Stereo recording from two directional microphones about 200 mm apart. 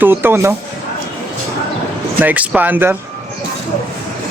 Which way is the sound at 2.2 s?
5° right (ahead or behind).